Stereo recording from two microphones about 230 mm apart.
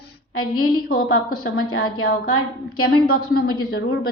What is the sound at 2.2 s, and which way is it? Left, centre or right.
Speech, left.